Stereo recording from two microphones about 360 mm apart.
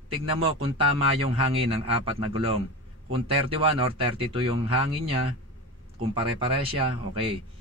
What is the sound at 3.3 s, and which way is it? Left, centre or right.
A man's voice, centre.